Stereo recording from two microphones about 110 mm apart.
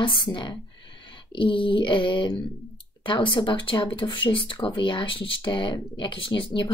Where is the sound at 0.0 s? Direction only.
45° left (ahead or behind).